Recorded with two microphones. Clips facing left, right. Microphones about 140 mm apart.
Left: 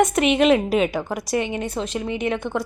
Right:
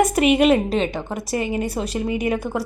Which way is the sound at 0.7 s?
5° left (ahead or behind).